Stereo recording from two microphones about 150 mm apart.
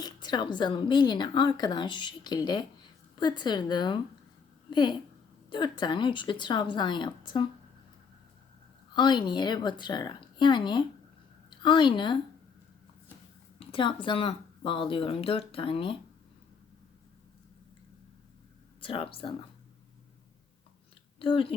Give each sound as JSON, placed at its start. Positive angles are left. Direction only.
{"t": 0.0, "sound": "a woman's voice", "side_deg": 30}
{"t": 9.0, "sound": "speech", "side_deg": 30}
{"t": 13.6, "sound": "speech", "side_deg": 35}
{"t": 18.8, "sound": "speech", "side_deg": 35}
{"t": 21.2, "sound": "speech", "side_deg": 35}